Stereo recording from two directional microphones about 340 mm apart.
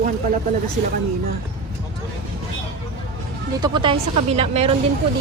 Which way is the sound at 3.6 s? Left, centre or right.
Centre.